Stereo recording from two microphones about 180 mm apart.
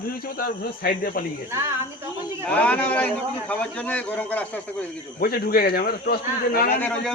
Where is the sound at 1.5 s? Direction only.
15° right (ahead or behind).